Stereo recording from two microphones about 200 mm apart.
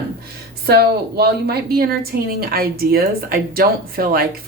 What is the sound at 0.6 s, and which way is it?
Speech, 50° right (ahead or behind).